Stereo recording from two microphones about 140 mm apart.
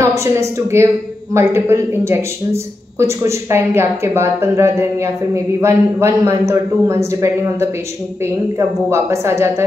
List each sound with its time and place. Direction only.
0.0 s speech: 20° right (ahead or behind)